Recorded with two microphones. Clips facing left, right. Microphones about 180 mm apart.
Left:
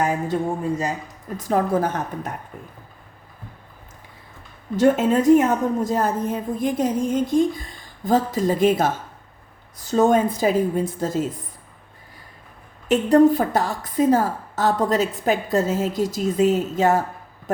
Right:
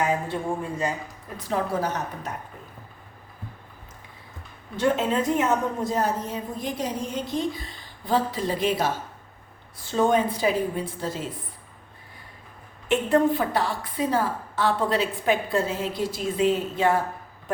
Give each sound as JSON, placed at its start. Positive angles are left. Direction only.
{"t": 1.4, "sound": "a woman's voice", "side_deg": 50}
{"t": 4.8, "sound": "a woman's voice", "side_deg": 45}
{"t": 12.9, "sound": "a woman's voice", "side_deg": 40}